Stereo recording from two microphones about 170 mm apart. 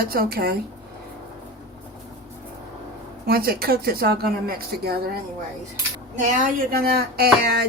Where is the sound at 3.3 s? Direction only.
65° right (ahead or behind).